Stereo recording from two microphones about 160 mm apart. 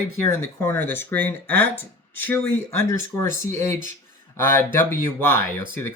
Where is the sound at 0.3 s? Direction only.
15° left (ahead or behind).